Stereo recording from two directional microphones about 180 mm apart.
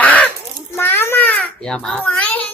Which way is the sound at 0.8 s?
10° left (ahead or behind).